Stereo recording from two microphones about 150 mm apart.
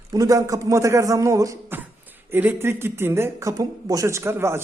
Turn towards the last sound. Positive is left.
turn(degrees=-15)  # may be behind; listen again after turning